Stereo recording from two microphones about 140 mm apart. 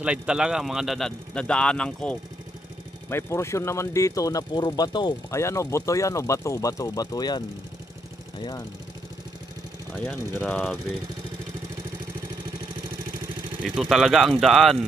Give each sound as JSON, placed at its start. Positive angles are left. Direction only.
{"t": 0.0, "sound": "speech", "side_deg": -5}
{"t": 3.1, "sound": "speech", "side_deg": 20}
{"t": 9.9, "sound": "speech", "side_deg": 5}
{"t": 13.7, "sound": "speech", "side_deg": 0}